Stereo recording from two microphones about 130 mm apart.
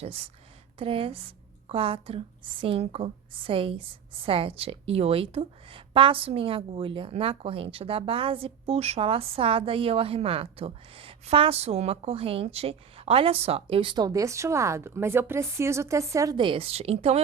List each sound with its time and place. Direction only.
0.0 s a woman's voice: 50° right (ahead or behind)
13.9 s speech: 30° right (ahead or behind)
16.4 s a woman's voice: 45° right (ahead or behind)